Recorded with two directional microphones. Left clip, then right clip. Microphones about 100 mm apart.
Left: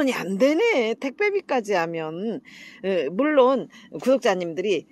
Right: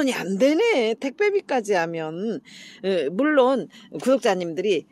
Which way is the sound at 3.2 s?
30° right (ahead or behind).